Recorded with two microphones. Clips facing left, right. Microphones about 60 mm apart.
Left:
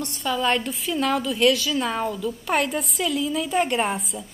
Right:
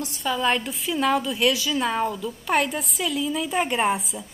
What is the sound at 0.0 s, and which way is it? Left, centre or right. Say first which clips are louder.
A woman's voice: even; centre.